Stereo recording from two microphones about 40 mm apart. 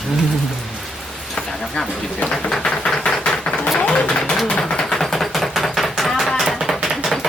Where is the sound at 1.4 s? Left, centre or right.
Centre.